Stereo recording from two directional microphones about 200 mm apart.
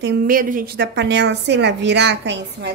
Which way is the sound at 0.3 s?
45° right (ahead or behind).